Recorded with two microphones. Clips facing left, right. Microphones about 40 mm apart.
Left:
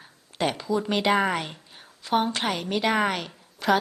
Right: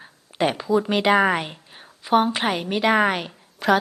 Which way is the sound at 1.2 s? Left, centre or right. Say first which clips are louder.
Right 5 dB; centre.